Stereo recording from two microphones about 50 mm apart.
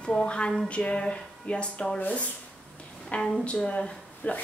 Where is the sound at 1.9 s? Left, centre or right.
Left.